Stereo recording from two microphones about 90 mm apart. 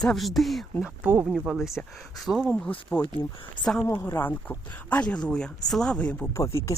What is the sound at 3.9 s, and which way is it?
Speech, 25° left (ahead or behind).